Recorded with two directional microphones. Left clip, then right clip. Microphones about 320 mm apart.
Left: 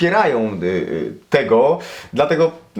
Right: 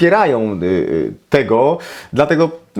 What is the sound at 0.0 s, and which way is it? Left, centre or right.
Speech, right.